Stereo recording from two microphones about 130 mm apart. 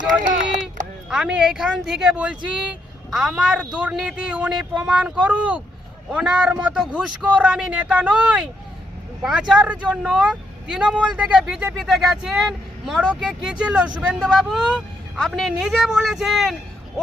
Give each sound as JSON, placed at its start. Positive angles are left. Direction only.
{"t": 0.3, "sound": "run", "side_deg": -75}
{"t": 1.1, "sound": "speech", "side_deg": -5}